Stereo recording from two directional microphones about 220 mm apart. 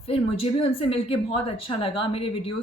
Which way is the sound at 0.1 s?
25° left (ahead or behind).